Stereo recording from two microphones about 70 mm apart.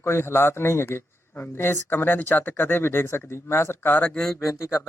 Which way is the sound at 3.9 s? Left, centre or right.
Left.